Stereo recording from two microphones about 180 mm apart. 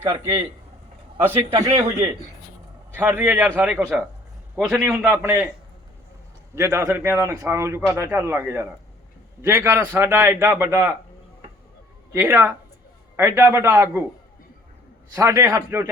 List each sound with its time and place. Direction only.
0.1 s a man's voice: 20° right (ahead or behind)
1.5 s a man's voice: 20° right (ahead or behind)
6.6 s a man's voice: 15° right (ahead or behind)
12.1 s a man's voice: 10° right (ahead or behind)
15.1 s a man's voice: 15° right (ahead or behind)